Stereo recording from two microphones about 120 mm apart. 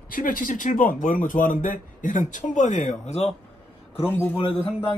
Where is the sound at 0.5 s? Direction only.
90° left; by 3.3 s 60° left (ahead or behind).